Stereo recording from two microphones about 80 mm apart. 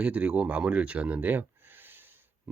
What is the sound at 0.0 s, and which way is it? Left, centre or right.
Speech, centre.